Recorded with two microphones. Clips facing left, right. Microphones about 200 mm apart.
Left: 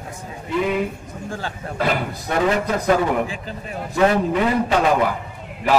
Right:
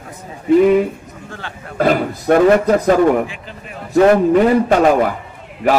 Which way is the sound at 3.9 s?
50° right (ahead or behind).